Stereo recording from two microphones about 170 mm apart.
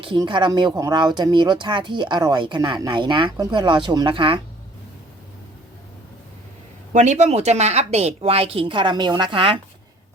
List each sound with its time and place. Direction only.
0.0 s speech: 30° right (ahead or behind)
6.9 s speech: 45° right (ahead or behind)